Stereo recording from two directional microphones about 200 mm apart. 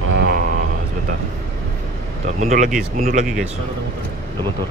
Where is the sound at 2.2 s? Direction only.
40° right (ahead or behind).